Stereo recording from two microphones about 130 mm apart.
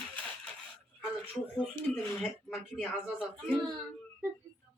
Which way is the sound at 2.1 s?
Centre (ahead or behind).